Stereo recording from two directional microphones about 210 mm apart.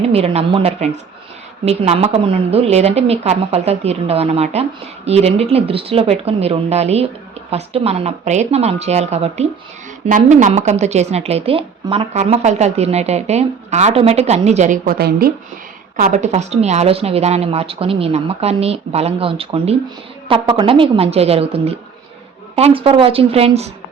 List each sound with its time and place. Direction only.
0.1 s speech: 30° right (ahead or behind); by 15.3 s 45° right (ahead or behind)
16.0 s speech: 35° right (ahead or behind)